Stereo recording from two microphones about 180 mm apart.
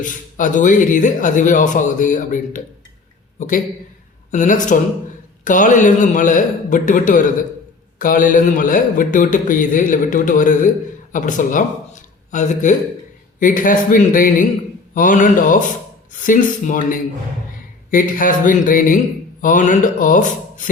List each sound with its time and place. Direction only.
0.0 s a man's voice: 45° left (ahead or behind)